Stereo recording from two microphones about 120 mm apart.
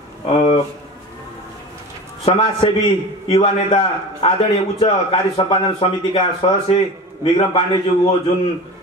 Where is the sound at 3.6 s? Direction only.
40° left (ahead or behind).